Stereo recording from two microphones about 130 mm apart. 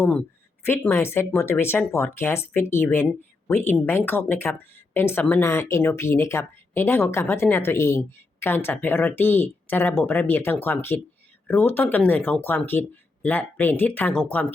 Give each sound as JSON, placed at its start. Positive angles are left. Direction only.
{"t": 0.1, "sound": "speech", "side_deg": 10}